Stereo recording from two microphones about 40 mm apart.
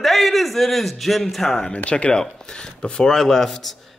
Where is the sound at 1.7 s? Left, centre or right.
Left.